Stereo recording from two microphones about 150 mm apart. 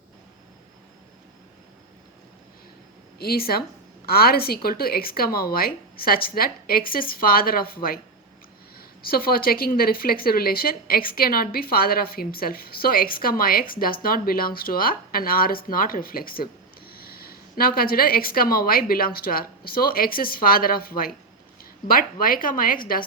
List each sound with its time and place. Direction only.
3.2 s a woman's voice: 90° left; by 23.0 s 70° left (ahead or behind)